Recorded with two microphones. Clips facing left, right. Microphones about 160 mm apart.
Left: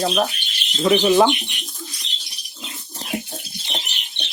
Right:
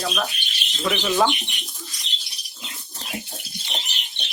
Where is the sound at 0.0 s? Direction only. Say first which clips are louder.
Left 6 dB; 30° left (ahead or behind).